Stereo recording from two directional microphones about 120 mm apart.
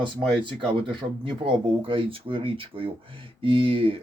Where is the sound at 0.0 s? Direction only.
45° right (ahead or behind).